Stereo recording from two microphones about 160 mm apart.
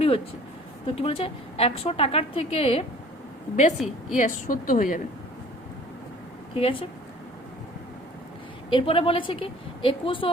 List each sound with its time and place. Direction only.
0.9 s a woman's voice: 35° left (ahead or behind)
3.5 s a woman's voice: 50° left (ahead or behind)
4.2 s a woman's voice: 60° left (ahead or behind)
6.6 s a woman's voice: 35° left (ahead or behind)
8.7 s a woman's voice: 35° left (ahead or behind)